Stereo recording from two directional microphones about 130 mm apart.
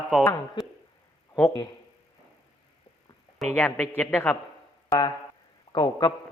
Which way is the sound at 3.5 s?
15° left (ahead or behind).